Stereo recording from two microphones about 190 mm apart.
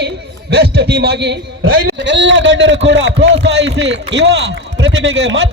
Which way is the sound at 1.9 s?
70° right (ahead or behind).